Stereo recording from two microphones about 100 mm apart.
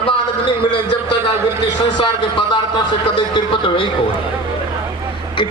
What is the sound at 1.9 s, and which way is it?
Speech, 50° left (ahead or behind).